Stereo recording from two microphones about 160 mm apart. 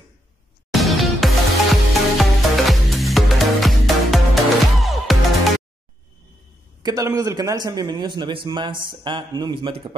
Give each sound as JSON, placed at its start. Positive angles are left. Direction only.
{"t": 0.7, "sound": "music", "side_deg": 0}
{"t": 6.8, "sound": "a man's voice", "side_deg": -25}